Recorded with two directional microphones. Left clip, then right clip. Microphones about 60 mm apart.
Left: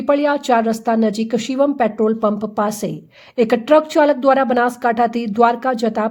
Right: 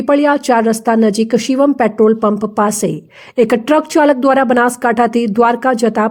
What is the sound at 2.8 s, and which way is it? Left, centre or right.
Speech, centre.